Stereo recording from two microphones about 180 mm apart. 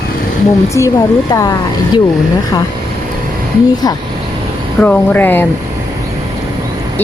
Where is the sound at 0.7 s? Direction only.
20° left (ahead or behind).